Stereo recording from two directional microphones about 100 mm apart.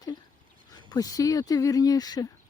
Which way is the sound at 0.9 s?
40° left (ahead or behind).